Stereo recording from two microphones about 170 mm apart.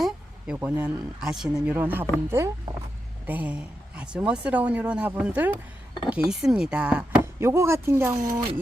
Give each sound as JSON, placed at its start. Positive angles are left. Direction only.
{"t": 0.6, "sound": "a woman's voice", "side_deg": -5}
{"t": 8.2, "sound": "speech", "side_deg": -50}